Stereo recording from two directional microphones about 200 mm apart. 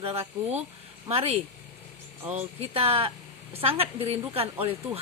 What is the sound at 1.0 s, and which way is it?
Speech, 30° right (ahead or behind).